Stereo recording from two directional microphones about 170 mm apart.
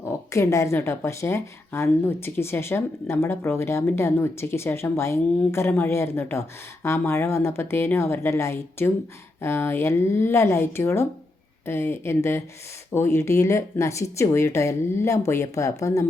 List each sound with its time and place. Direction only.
0.0 s speech: 15° left (ahead or behind)